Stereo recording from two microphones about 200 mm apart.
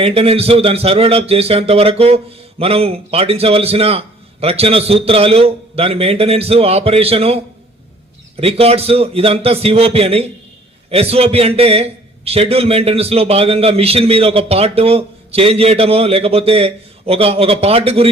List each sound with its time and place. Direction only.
0.0 s a man's voice: 30° right (ahead or behind)